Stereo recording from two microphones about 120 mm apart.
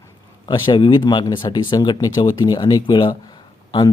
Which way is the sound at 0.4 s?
40° left (ahead or behind).